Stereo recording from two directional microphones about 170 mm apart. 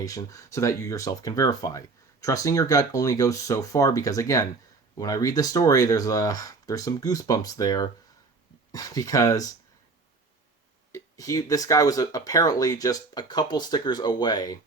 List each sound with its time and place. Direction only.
0.0 s speech: 20° left (ahead or behind)
10.9 s speech: 20° left (ahead or behind)